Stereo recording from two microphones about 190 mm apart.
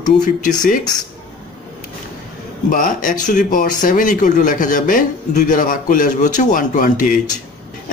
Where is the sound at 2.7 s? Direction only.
45° left (ahead or behind).